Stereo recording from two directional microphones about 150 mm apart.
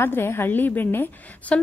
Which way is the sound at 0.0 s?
15° left (ahead or behind).